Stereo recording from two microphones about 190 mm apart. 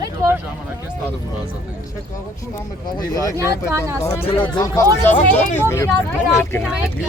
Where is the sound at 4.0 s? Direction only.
15° left (ahead or behind).